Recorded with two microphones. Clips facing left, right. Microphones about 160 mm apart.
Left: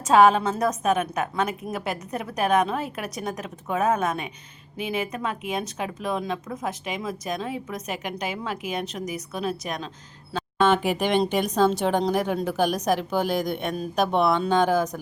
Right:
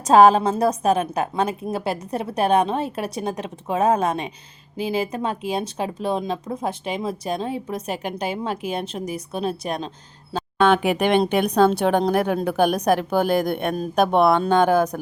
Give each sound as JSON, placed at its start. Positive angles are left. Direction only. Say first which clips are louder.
{"t": 0.0, "sound": "speech", "louder": "right 4 dB", "side_deg": -35}
{"t": 10.6, "sound": "speech", "louder": "right 3 dB", "side_deg": -60}